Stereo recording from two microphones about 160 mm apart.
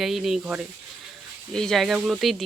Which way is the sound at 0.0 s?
Centre (ahead or behind).